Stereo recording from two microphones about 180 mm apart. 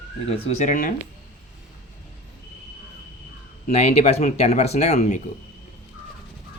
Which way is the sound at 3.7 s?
35° left (ahead or behind).